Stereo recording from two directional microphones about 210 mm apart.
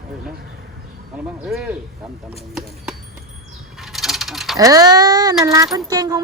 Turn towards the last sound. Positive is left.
turn(degrees=-20)  # may be behind; listen again after turning